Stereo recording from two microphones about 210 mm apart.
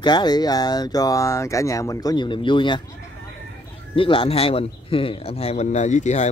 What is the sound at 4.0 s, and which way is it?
Speech, 25° left (ahead or behind).